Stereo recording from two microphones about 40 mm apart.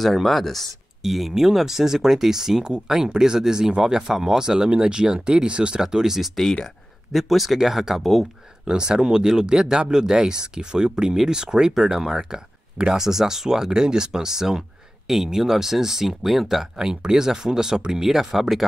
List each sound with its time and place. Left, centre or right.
0.0 s speech: centre; by 5.8 s right
5.8 s speech: centre
8.6 s speech: right; by 18.7 s centre